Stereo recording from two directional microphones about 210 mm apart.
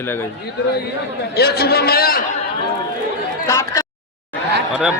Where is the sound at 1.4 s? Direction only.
50° left (ahead or behind).